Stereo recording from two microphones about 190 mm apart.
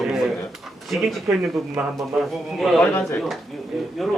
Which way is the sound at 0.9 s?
Centre (ahead or behind).